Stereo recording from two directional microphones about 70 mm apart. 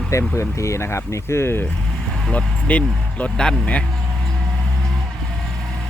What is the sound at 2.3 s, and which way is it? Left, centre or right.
Speech, left.